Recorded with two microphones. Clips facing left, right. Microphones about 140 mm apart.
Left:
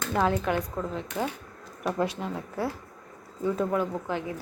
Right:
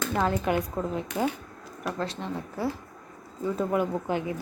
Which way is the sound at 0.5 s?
10° right (ahead or behind).